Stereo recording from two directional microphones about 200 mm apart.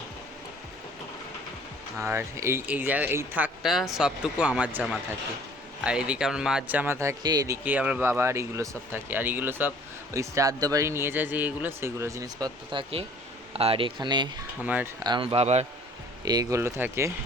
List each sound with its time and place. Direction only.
2.0 s speech: 15° right (ahead or behind)
14.6 s speech: 10° right (ahead or behind)
15.0 s speech: 25° right (ahead or behind)
16.2 s speech: 20° right (ahead or behind)